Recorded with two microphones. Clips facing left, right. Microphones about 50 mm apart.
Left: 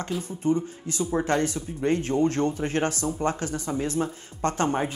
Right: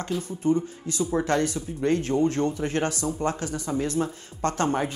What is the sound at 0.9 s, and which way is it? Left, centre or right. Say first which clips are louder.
Speech: even; left.